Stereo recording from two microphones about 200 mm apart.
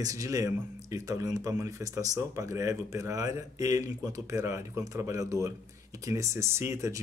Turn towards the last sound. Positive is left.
turn(degrees=-15)  # may be behind; listen again after turning